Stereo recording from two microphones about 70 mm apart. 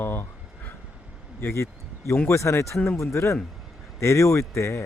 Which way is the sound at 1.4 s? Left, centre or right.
Left.